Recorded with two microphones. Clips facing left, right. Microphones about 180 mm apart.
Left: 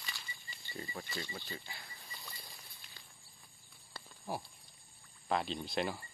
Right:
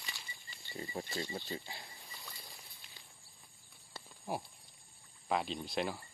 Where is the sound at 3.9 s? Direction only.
15° right (ahead or behind).